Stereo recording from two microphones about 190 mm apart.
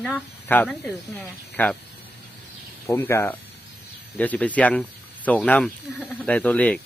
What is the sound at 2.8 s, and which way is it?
Speech, 15° left (ahead or behind).